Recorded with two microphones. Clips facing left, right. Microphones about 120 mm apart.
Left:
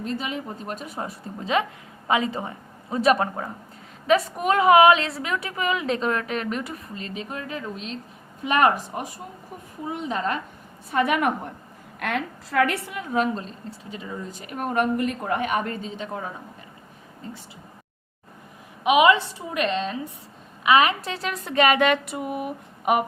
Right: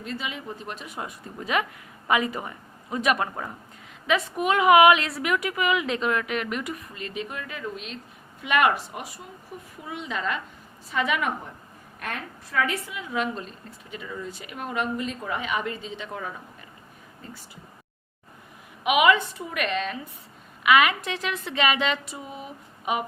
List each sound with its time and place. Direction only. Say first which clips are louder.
0.0 s a woman's voice: left 4 dB; 40° left (ahead or behind)
10.9 s a woman's voice: left 4 dB; 55° left (ahead or behind)
11.9 s a woman's voice: left 7 dB; 90° left; by 13.1 s 65° left (ahead or behind)
13.1 s a woman's voice: left 5 dB; 35° left (ahead or behind)
14.3 s speech: left 5 dB; 40° left (ahead or behind)
18.8 s a woman's voice: left 3 dB; 30° left (ahead or behind); by 23.0 s 55° left (ahead or behind)